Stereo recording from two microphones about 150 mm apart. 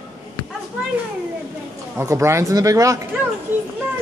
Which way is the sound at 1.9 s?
20° right (ahead or behind).